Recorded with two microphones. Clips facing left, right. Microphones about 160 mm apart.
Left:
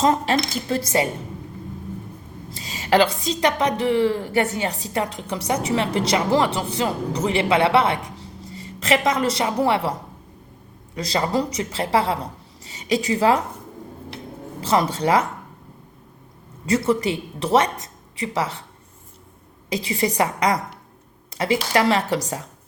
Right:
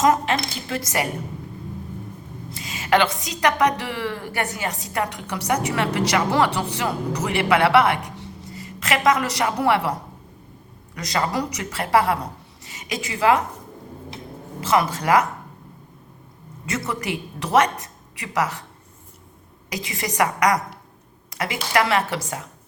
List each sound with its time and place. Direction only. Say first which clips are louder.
0.0 s a woman's voice: even; 30° left (ahead or behind)
2.5 s a woman's voice: left 1 dB; 35° left (ahead or behind)
10.9 s a woman's voice: left 2 dB; 30° left (ahead or behind)
14.6 s speech: left 1 dB; 35° left (ahead or behind)
16.6 s a woman's voice: left 7 dB; 30° left (ahead or behind)
19.7 s speech: left 5 dB; 30° left (ahead or behind)